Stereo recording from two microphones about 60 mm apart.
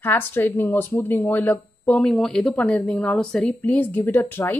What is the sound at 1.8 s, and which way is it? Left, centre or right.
Speech, centre.